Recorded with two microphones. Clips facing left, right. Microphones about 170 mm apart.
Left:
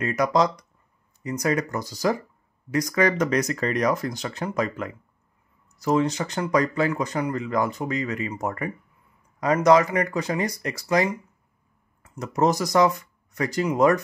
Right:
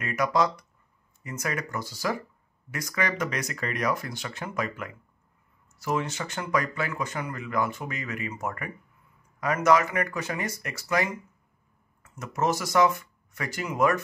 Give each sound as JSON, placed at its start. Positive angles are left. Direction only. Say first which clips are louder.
{"t": 0.0, "sound": "speech", "louder": "left 4 dB", "side_deg": 35}